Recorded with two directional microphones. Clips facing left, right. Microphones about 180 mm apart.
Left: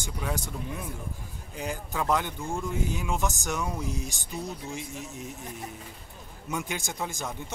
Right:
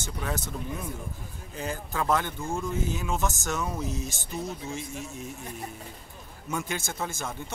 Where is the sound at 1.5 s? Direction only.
15° left (ahead or behind).